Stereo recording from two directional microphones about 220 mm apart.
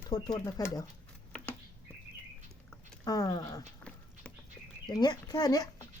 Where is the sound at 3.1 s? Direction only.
15° left (ahead or behind).